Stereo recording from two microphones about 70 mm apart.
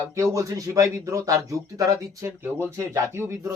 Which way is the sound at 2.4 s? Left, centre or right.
Right.